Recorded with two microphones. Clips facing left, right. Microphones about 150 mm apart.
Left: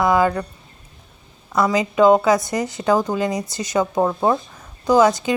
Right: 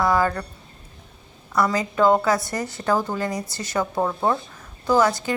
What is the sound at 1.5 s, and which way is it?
A woman's voice, 20° left (ahead or behind).